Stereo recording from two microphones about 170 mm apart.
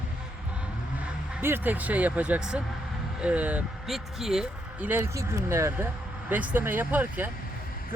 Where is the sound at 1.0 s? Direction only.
10° right (ahead or behind).